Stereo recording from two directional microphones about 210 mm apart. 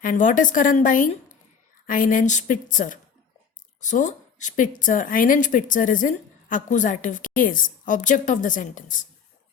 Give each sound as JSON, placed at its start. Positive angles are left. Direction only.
{"t": 0.0, "sound": "a woman's voice", "side_deg": 40}